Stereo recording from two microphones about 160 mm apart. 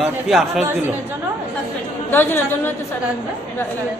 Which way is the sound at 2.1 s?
15° left (ahead or behind).